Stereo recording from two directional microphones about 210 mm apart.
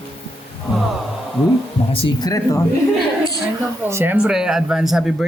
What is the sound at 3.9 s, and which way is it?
Speech, 10° right (ahead or behind).